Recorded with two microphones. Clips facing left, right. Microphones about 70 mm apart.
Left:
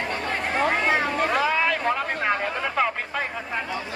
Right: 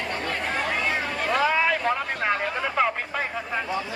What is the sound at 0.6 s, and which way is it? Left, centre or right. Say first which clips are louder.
Chatter: left 6 dB; left.